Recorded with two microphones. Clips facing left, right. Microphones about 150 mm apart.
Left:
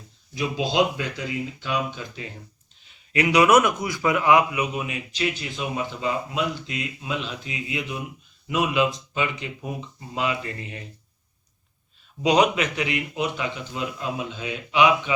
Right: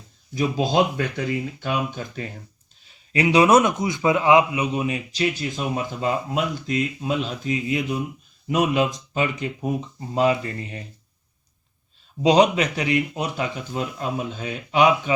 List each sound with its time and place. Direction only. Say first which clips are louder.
0.3 s speech: right 2 dB; 45° right (ahead or behind)
2.8 s a man's voice: right 2 dB; 30° right (ahead or behind)
12.2 s a man's voice: right 3 dB; 30° right (ahead or behind)